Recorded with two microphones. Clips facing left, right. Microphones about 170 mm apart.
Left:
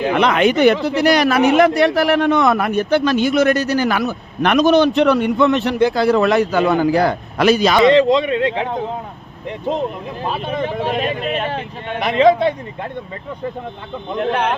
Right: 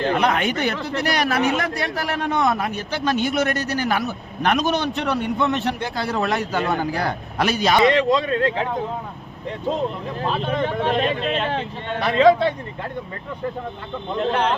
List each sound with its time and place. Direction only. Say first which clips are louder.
0.1 s a man's voice: left 5 dB; 90° left
7.9 s speech: left 5 dB; 25° left (ahead or behind)
10.2 s speech: left 1 dB; 10° left (ahead or behind)